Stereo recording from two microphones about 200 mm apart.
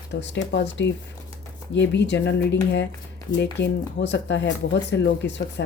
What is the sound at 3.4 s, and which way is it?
Speech, 60° left (ahead or behind).